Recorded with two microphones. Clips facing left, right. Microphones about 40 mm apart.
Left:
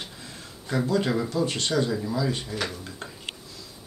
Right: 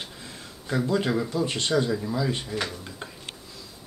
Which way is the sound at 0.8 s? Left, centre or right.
Centre.